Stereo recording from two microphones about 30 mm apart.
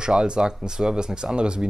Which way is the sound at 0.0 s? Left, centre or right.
Right.